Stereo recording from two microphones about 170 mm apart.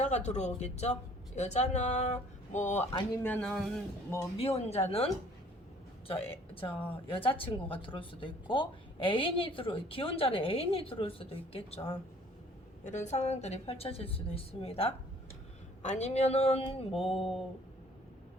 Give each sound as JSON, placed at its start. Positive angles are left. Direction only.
{"t": 0.0, "sound": "speech", "side_deg": 40}
{"t": 3.2, "sound": "music", "side_deg": 10}
{"t": 4.4, "sound": "speech", "side_deg": 35}
{"t": 6.1, "sound": "speech", "side_deg": 30}
{"t": 6.7, "sound": "speech", "side_deg": 10}
{"t": 6.9, "sound": "speech", "side_deg": 30}
{"t": 12.8, "sound": "speech", "side_deg": 45}
{"t": 16.9, "sound": "music", "side_deg": 0}